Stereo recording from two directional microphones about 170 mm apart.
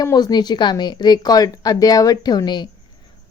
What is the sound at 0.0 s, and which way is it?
A woman's voice, 25° left (ahead or behind).